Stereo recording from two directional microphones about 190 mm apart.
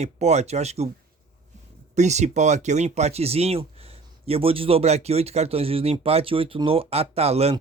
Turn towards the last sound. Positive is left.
turn(degrees=-35)  # may be behind; listen again after turning